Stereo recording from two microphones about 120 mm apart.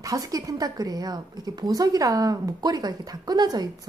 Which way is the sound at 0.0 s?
30° right (ahead or behind).